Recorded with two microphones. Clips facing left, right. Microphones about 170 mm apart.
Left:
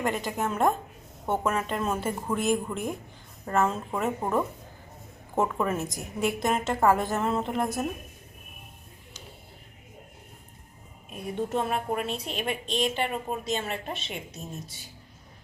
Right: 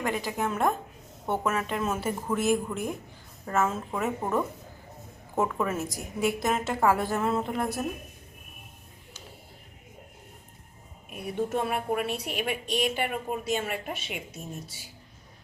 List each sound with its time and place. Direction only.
0.3 s a woman's voice: centre (ahead or behind)
11.1 s a woman's voice: 10° right (ahead or behind)